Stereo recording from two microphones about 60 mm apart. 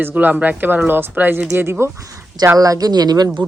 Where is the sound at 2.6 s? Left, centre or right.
Right.